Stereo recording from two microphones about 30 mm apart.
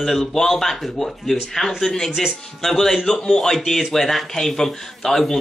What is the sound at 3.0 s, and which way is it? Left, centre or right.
Speech, centre.